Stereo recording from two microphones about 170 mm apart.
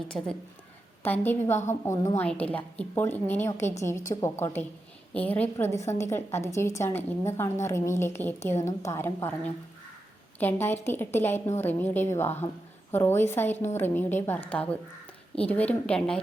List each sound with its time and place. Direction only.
0.1 s a woman's voice: 15° left (ahead or behind)
10.4 s a woman's voice: 10° left (ahead or behind)